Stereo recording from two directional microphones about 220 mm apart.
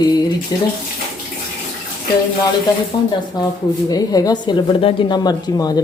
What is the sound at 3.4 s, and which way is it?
Speech, 20° left (ahead or behind).